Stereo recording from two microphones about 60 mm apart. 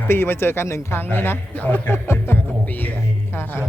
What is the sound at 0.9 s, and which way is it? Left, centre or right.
A man's voice, left.